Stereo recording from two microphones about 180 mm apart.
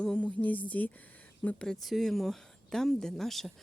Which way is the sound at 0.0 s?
5° left (ahead or behind).